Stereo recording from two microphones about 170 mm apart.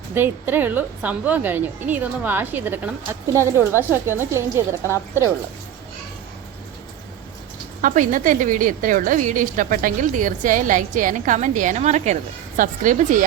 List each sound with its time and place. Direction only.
0.1 s a woman's voice: 10° right (ahead or behind)
7.8 s a woman's voice: 50° right (ahead or behind)